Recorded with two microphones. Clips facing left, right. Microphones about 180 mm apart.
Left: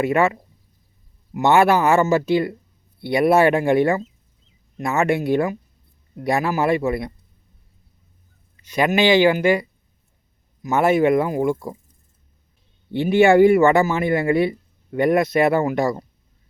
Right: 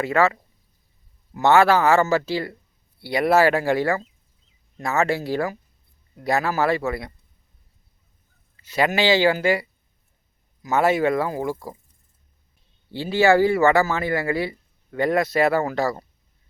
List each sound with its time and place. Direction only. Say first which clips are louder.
0.0 s speech: left 2 dB; 20° left (ahead or behind)
1.3 s speech: left 1 dB; 15° left (ahead or behind)
8.7 s speech: left 3 dB; 15° left (ahead or behind)
12.9 s speech: left 4 dB; 20° left (ahead or behind)